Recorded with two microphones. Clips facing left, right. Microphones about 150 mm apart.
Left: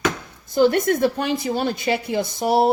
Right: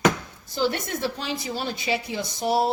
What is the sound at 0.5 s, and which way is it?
A woman's voice, 55° left (ahead or behind).